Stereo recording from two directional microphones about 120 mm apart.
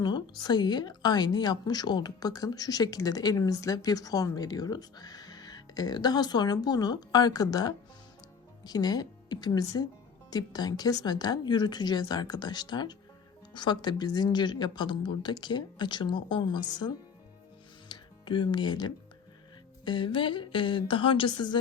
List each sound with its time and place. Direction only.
0.0 s speech: 35° left (ahead or behind)
17.8 s music: 40° left (ahead or behind)
19.8 s a woman's voice: 40° left (ahead or behind)